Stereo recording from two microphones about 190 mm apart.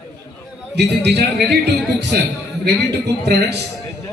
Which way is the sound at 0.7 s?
60° right (ahead or behind).